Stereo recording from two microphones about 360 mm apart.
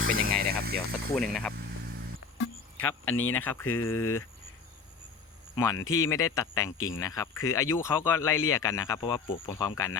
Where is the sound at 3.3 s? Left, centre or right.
Centre.